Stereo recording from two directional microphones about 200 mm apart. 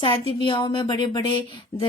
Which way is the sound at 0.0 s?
25° left (ahead or behind).